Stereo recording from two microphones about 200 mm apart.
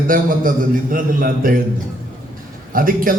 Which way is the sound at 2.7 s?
45° right (ahead or behind).